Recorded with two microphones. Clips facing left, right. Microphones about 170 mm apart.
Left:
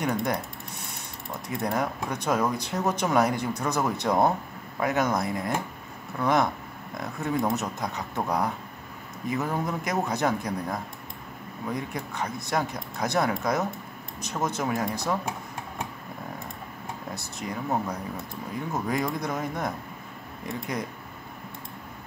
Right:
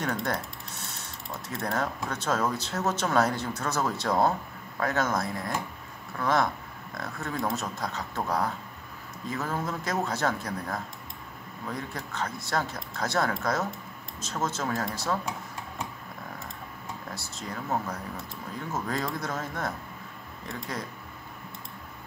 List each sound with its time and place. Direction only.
0.0 s speech: 15° left (ahead or behind)
1.5 s speech: 15° left (ahead or behind)
17.1 s speech: 15° left (ahead or behind)
20.7 s speech: 20° left (ahead or behind)